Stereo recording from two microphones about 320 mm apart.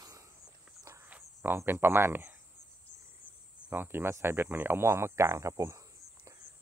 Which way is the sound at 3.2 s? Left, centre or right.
Left.